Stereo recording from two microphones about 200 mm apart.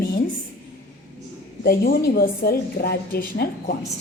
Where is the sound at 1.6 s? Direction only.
50° left (ahead or behind).